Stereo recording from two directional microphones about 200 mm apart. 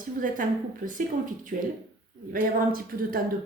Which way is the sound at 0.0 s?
45° right (ahead or behind).